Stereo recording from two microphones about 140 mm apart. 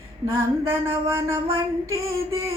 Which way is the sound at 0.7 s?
20° right (ahead or behind).